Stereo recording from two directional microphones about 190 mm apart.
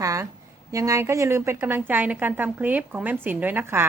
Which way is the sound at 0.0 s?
15° right (ahead or behind).